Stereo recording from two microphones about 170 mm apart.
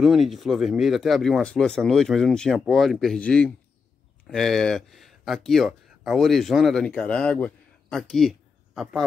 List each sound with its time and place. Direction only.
0.0 s speech: centre (ahead or behind)